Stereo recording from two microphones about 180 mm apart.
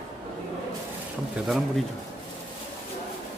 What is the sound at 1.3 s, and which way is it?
Speech, centre (ahead or behind).